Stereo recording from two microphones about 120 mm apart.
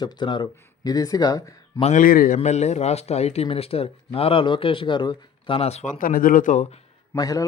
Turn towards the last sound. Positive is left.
turn(degrees=30)  # may be behind; listen again after turning